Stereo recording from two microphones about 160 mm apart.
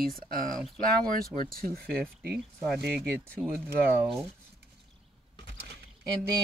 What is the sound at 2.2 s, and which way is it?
Speech, 5° right (ahead or behind).